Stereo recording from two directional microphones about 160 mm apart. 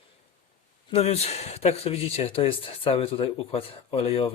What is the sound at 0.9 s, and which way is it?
Speech, 40° left (ahead or behind).